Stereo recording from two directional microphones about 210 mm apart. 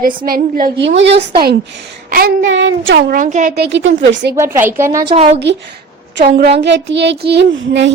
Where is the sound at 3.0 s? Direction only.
40° right (ahead or behind); by 4.3 s 55° right (ahead or behind).